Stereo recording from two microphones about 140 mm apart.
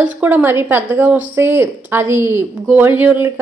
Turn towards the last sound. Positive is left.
turn(degrees=-15)  # may be behind; listen again after turning